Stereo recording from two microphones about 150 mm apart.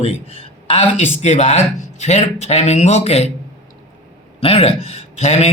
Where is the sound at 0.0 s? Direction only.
40° left (ahead or behind).